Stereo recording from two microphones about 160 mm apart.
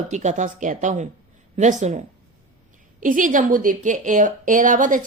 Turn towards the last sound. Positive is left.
turn(degrees=-55)  # may be behind; listen again after turning